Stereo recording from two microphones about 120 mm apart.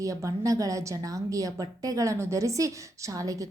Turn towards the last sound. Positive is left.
turn(degrees=-30)  # may be behind; listen again after turning